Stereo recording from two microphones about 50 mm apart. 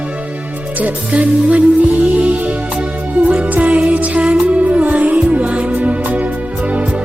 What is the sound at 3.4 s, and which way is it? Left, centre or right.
Music, right.